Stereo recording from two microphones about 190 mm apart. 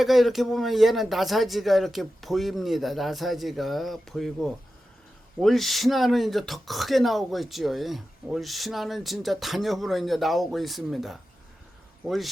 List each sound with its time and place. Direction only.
0.0 s speech: centre (ahead or behind)